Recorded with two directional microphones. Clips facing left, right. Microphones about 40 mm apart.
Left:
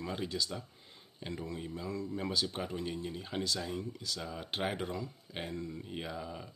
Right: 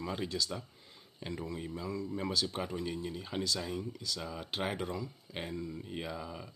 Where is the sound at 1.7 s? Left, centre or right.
Left.